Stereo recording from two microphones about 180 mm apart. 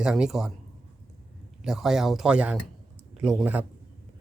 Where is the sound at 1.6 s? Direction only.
Centre (ahead or behind).